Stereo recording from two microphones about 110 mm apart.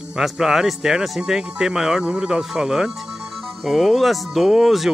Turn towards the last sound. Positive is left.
turn(degrees=0)  # may be behind; listen again after turning